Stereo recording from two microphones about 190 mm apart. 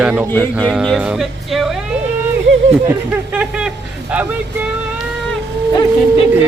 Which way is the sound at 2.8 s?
5° right (ahead or behind).